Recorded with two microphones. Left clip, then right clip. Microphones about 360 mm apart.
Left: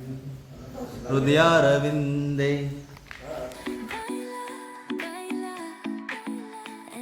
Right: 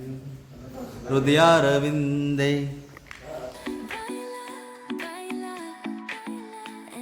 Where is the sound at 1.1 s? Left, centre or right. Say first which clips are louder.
Right 1 dB; right.